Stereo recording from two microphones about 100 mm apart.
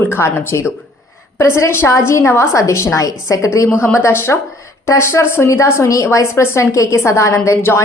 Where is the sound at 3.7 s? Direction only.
20° left (ahead or behind).